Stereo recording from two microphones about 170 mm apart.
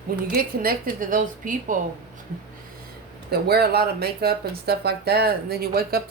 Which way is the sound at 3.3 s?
65° right (ahead or behind).